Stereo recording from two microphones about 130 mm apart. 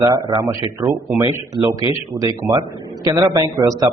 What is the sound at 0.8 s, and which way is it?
Speech, 20° right (ahead or behind).